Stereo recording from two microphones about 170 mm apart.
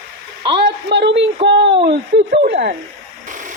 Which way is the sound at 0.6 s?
90° right.